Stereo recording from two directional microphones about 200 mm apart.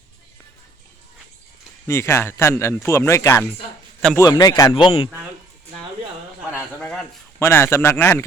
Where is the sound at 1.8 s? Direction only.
15° left (ahead or behind).